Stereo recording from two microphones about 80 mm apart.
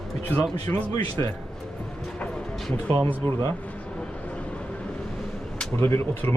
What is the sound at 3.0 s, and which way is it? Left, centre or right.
Speech, left.